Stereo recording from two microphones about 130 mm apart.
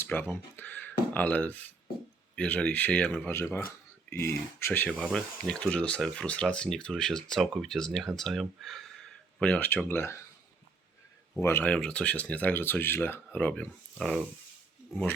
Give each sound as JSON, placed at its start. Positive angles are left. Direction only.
{"t": 0.0, "sound": "speech", "side_deg": 15}
{"t": 11.3, "sound": "speech", "side_deg": 15}